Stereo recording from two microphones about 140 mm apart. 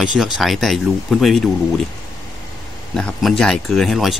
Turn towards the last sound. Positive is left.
turn(degrees=0)  # may be behind; listen again after turning